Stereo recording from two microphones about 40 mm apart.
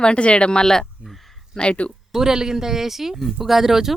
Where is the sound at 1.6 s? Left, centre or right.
Left.